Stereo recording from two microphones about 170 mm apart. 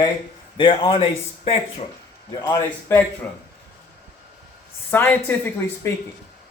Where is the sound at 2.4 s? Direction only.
15° left (ahead or behind).